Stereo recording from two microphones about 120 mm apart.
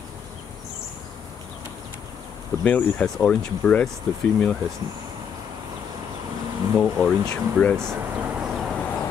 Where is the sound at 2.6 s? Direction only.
10° left (ahead or behind).